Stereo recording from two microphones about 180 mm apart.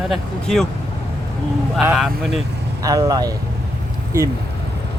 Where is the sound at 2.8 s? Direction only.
20° right (ahead or behind).